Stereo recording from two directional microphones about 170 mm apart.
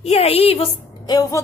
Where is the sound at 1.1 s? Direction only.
20° left (ahead or behind).